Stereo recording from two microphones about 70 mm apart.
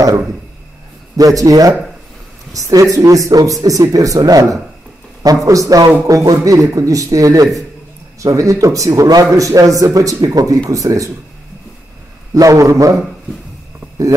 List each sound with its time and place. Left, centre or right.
1.1 s a man's voice: right
12.4 s a man's voice: right